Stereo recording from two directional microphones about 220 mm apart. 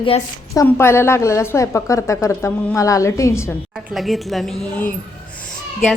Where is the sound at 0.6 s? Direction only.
10° left (ahead or behind).